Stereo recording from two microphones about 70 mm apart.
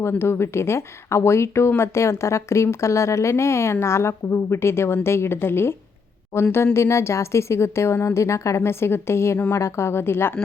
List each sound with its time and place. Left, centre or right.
0.1 s speech: left